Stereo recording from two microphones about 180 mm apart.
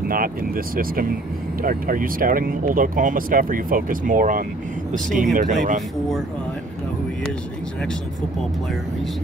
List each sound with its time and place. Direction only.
0.1 s speech: 50° right (ahead or behind)